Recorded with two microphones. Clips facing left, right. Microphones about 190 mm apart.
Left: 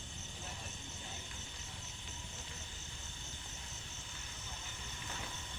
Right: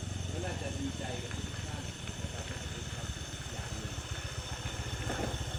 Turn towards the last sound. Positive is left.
turn(degrees=-55)  # may be behind; listen again after turning